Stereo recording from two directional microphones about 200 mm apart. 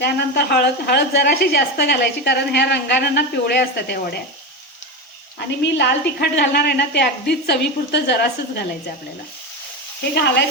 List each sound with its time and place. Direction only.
0.0 s speech: 55° left (ahead or behind)
5.7 s speech: 55° left (ahead or behind)
10.2 s speech: 60° left (ahead or behind)